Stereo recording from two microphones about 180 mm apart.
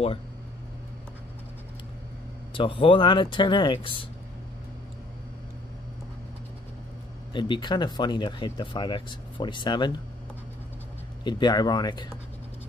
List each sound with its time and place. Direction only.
2.5 s speech: 30° left (ahead or behind)
7.3 s speech: 25° left (ahead or behind)
11.2 s speech: 25° left (ahead or behind)